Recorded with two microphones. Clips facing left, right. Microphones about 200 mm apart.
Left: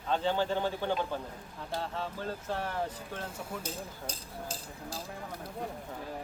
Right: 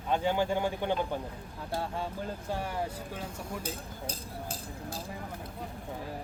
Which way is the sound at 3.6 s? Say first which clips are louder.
Right 1 dB; 55° right (ahead or behind).